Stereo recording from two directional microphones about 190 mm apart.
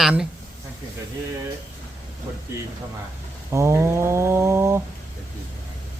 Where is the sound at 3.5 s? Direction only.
15° right (ahead or behind).